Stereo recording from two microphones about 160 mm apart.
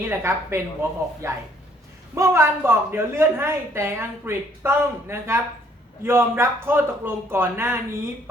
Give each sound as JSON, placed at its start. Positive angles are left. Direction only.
{"t": 0.0, "sound": "a woman's voice", "side_deg": -15}